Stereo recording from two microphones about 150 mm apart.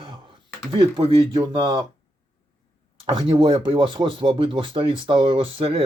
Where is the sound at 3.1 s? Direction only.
35° right (ahead or behind).